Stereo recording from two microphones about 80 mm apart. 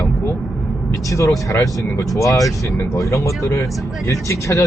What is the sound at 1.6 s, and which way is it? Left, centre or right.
Speech, left.